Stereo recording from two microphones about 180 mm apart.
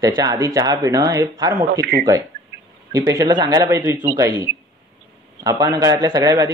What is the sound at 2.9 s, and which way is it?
A man's voice, 20° right (ahead or behind).